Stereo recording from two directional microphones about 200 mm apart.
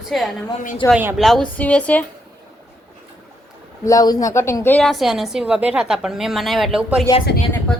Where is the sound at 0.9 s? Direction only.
10° right (ahead or behind).